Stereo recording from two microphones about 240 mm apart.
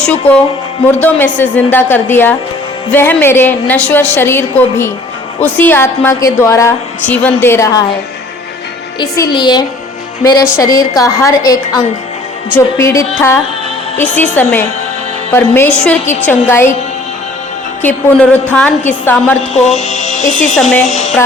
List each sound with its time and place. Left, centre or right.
0.0 s a woman's voice: centre
9.0 s a woman's voice: centre
15.8 s a woman's voice: centre
17.8 s a woman's voice: centre
19.6 s speech: left
20.6 s speech: centre
20.8 s speech: left